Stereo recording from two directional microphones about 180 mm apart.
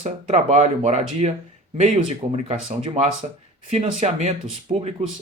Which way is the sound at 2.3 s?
40° right (ahead or behind).